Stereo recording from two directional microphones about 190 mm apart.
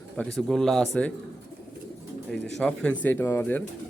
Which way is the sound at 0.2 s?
Centre (ahead or behind).